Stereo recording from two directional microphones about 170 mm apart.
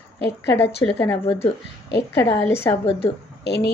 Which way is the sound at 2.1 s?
15° left (ahead or behind).